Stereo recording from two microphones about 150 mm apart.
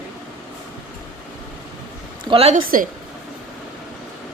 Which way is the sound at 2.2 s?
40° right (ahead or behind).